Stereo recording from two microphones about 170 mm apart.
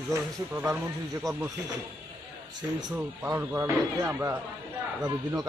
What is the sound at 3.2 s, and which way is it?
Speech, 15° right (ahead or behind).